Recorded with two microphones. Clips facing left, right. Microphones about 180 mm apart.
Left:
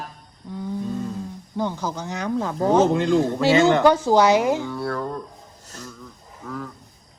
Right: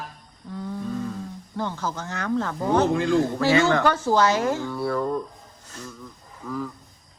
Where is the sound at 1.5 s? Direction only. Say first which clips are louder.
Left 3 dB; 15° left (ahead or behind).